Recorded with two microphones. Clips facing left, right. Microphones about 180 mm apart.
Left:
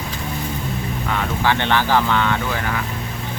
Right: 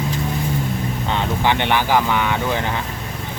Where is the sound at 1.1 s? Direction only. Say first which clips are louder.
Right 1 dB; 20° right (ahead or behind).